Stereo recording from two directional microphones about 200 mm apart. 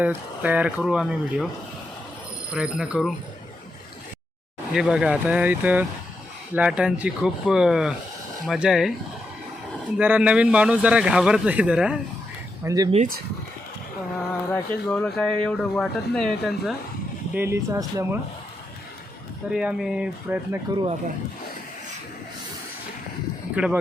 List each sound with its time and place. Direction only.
0.0 s speech: 10° right (ahead or behind)
2.5 s speech: 5° right (ahead or behind)
4.7 s speech: 5° right (ahead or behind)
10.0 s speech: 5° right (ahead or behind)
12.6 s speech: 20° right (ahead or behind)
12.9 s speech: 40° right (ahead or behind)
14.5 s speech: 10° left (ahead or behind)
17.3 s speech: 15° right (ahead or behind)
19.5 s speech: 5° right (ahead or behind)